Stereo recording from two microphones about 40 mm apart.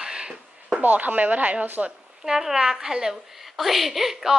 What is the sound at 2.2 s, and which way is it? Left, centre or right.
A woman's voice, centre.